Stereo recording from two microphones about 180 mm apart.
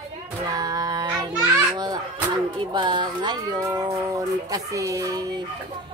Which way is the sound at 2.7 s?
25° right (ahead or behind).